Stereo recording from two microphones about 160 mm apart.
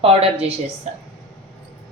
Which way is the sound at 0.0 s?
35° right (ahead or behind).